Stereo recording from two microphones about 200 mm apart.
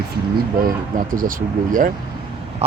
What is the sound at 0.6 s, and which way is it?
Speech, 45° right (ahead or behind).